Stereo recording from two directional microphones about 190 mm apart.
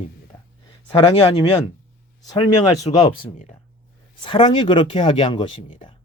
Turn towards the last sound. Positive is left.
turn(degrees=25)  # may be behind; listen again after turning